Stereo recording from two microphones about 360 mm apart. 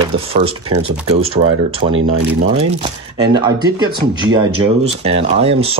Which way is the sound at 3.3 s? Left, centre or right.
Centre.